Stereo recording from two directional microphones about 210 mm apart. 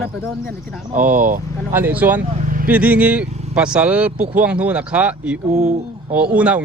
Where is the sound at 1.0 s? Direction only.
40° right (ahead or behind).